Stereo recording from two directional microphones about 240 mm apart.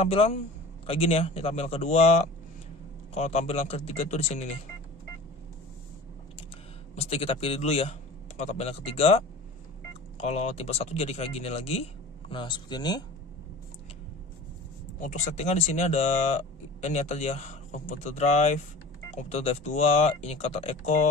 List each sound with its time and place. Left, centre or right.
0.0 s speech: left
7.0 s speech: left
15.0 s speech: left